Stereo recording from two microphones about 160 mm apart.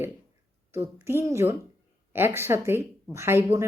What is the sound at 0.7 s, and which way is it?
Speech, 15° right (ahead or behind).